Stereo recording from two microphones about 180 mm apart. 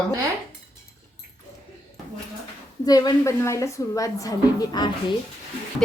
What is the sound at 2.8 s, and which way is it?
A woman's voice, 20° left (ahead or behind).